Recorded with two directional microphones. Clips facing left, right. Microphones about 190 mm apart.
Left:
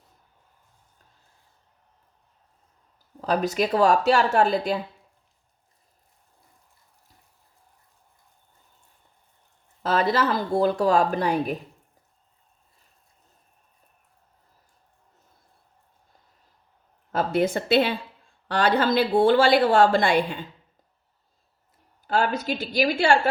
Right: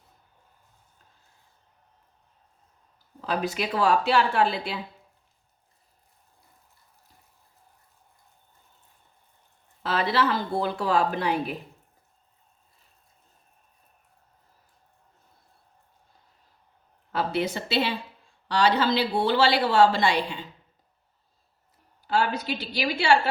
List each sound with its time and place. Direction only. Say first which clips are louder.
3.2 s speech: left 5 dB; 40° left (ahead or behind)
9.8 s speech: left 3 dB; 40° left (ahead or behind)
17.1 s speech: left 4 dB; 45° left (ahead or behind)
22.0 s speech: left 2 dB; 50° left (ahead or behind)